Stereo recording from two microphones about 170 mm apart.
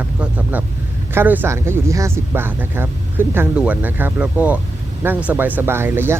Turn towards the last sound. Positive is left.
turn(degrees=-15)  # may be behind; listen again after turning